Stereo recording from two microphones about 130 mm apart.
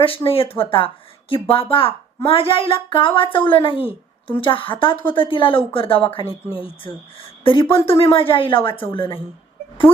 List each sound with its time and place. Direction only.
0.0 s a woman's voice: 45° left (ahead or behind)